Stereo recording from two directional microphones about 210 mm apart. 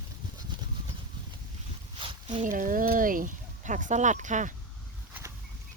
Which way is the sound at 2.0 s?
25° right (ahead or behind).